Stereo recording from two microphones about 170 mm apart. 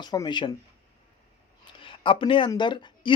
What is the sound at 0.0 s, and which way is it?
Speech, 25° left (ahead or behind).